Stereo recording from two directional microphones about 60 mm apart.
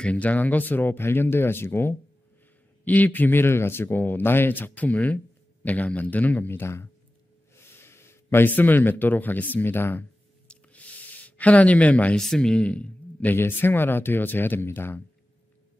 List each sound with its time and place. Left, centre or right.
0.0 s speech: left
2.8 s speech: left
10.5 s a sound: left
12.2 s speech: centre
13.4 s speech: left